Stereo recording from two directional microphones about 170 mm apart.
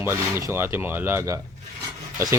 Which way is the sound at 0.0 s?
15° right (ahead or behind).